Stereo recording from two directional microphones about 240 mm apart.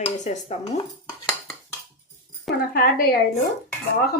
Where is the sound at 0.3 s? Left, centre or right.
Left.